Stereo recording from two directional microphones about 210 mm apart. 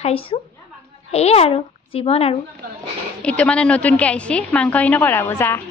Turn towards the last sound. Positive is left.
turn(degrees=10)  # may be behind; listen again after turning